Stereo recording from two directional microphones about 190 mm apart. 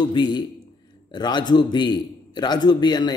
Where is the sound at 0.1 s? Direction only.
25° left (ahead or behind).